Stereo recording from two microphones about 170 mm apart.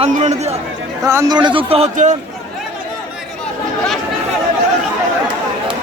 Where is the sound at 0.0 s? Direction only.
40° right (ahead or behind).